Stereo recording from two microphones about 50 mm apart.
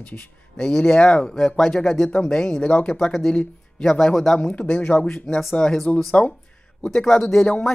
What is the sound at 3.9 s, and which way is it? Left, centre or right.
Speech, centre.